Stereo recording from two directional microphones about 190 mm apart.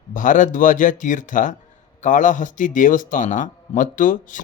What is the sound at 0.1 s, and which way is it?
A man's voice, 45° left (ahead or behind).